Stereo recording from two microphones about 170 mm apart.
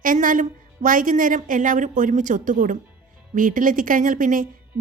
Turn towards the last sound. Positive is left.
turn(degrees=-50)  # may be behind; listen again after turning